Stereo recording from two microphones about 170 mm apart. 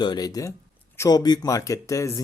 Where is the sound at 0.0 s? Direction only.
25° left (ahead or behind).